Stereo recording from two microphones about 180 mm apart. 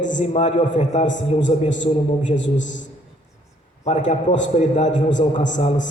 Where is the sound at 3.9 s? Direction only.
45° left (ahead or behind).